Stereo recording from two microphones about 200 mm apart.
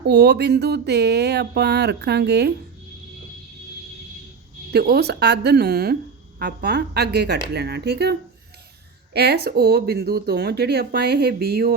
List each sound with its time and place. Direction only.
0.1 s speech: 55° right (ahead or behind)
4.7 s speech: 55° right (ahead or behind)
9.1 s speech: 50° right (ahead or behind)